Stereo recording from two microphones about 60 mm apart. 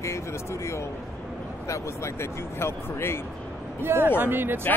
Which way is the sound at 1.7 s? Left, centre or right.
Left.